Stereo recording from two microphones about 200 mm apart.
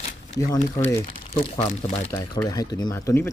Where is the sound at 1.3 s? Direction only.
30° left (ahead or behind); by 3.3 s 15° left (ahead or behind).